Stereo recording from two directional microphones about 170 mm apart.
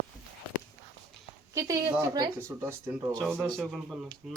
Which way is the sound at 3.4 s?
5° left (ahead or behind).